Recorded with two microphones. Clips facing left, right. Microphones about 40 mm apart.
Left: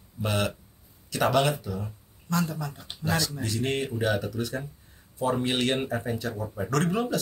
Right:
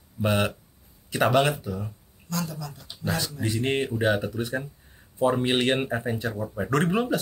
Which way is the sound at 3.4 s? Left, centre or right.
Right.